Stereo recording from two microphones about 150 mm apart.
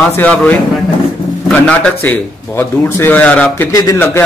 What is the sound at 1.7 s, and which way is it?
Speech, 10° left (ahead or behind).